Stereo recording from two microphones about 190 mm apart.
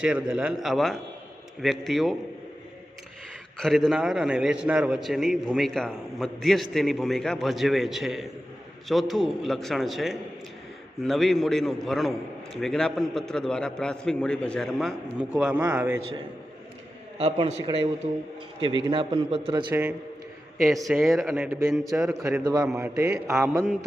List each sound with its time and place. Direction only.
0.0 s a man's voice: 5° right (ahead or behind)
3.6 s a man's voice: centre (ahead or behind)
17.2 s a man's voice: 30° right (ahead or behind)
18.6 s a man's voice: 25° left (ahead or behind)
18.9 s a man's voice: 30° right (ahead or behind)
20.6 s a man's voice: centre (ahead or behind)
22.4 s a man's voice: 20° right (ahead or behind)
22.8 s mantra: 15° right (ahead or behind)